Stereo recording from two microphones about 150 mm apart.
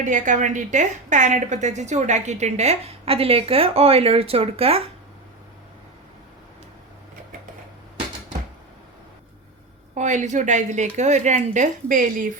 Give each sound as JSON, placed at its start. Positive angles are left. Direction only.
{"t": 0.0, "sound": "a woman's voice", "side_deg": -55}
{"t": 9.9, "sound": "a woman's voice", "side_deg": -55}